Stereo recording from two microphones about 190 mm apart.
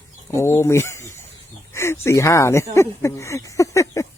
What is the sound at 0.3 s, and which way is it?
Speech, 15° left (ahead or behind).